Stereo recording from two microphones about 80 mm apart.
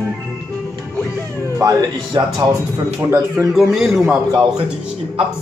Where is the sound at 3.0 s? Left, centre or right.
Right.